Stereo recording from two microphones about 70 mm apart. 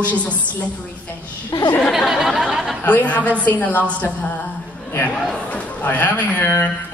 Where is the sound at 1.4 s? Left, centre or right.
Left.